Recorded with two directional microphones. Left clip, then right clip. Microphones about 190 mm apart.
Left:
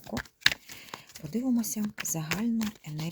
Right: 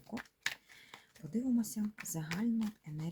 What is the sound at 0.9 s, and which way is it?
Speech, 35° left (ahead or behind).